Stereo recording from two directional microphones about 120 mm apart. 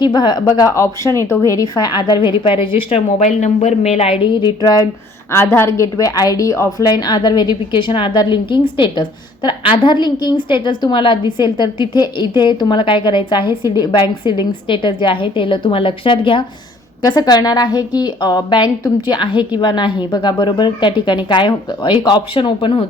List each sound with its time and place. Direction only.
0.0 s a woman's voice: 40° left (ahead or behind)
1.7 s a woman's voice: 35° left (ahead or behind)
2.4 s a woman's voice: 50° left (ahead or behind)
3.2 s a woman's voice: 75° left (ahead or behind); by 4.9 s 35° left (ahead or behind)
5.3 s a woman's voice: 20° left (ahead or behind); by 16.5 s 45° left (ahead or behind)
17.0 s a woman's voice: 30° left (ahead or behind)